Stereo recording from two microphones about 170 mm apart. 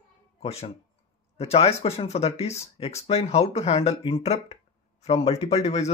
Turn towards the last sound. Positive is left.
turn(degrees=40)  # may be behind; listen again after turning